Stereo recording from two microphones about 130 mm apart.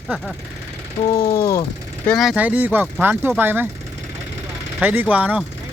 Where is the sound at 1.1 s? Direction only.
25° left (ahead or behind).